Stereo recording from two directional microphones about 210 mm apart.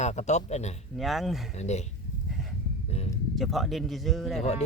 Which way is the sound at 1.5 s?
30° left (ahead or behind).